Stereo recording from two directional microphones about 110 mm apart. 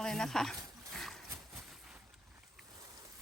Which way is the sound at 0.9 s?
Centre (ahead or behind).